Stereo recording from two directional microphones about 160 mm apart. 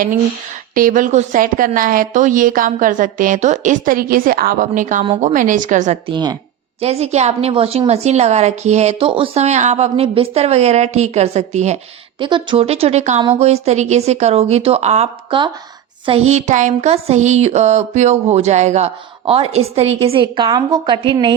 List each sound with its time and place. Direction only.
0.7 s a woman's voice: 60° right (ahead or behind)
6.1 s a woman's voice: 30° right (ahead or behind)
6.7 s a woman's voice: 40° right (ahead or behind)
12.2 s a woman's voice: 30° right (ahead or behind)